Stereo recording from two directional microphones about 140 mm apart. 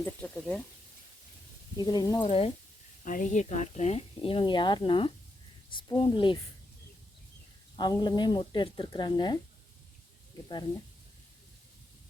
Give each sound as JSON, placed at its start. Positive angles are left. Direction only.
{"t": 0.2, "sound": "speech", "side_deg": 5}
{"t": 1.8, "sound": "speech", "side_deg": 30}
{"t": 2.2, "sound": "speech", "side_deg": 45}
{"t": 3.0, "sound": "speech", "side_deg": 70}
{"t": 7.8, "sound": "speech", "side_deg": 30}